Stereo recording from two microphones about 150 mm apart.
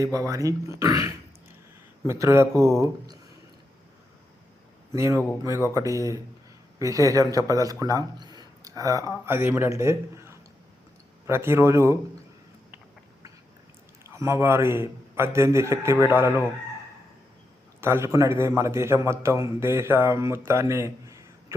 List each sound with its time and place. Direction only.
0.0 s a man's voice: 20° right (ahead or behind)
4.9 s a man's voice: 20° right (ahead or behind)
14.0 s a man's voice: 20° right (ahead or behind)
17.7 s a man's voice: 15° right (ahead or behind)